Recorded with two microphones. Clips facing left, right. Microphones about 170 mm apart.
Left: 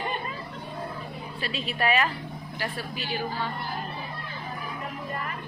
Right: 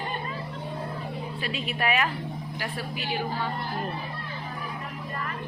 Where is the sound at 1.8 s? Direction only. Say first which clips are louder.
Left 2 dB; 10° right (ahead or behind).